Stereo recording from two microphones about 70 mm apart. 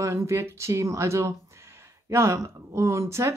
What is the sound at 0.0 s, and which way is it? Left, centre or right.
Speech, right.